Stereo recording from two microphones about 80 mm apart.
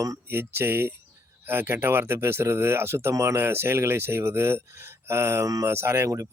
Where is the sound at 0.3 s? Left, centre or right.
Right.